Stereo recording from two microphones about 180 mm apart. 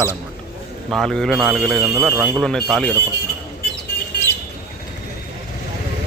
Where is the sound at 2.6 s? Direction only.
Centre (ahead or behind).